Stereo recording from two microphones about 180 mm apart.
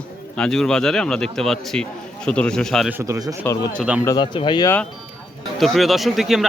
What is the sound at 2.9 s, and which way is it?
Speech, 15° right (ahead or behind).